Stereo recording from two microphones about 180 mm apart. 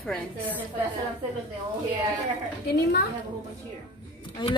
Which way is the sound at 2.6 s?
65° left (ahead or behind).